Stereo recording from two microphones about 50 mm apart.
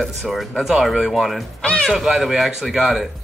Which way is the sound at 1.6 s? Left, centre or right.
Centre.